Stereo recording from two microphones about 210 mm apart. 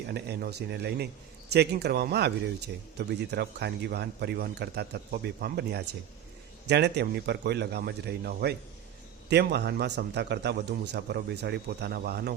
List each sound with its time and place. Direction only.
0.1 s a man's voice: 50° right (ahead or behind)